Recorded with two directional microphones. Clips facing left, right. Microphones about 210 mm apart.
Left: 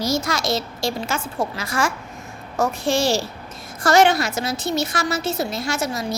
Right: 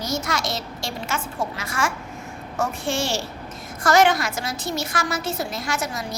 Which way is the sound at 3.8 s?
30° left (ahead or behind).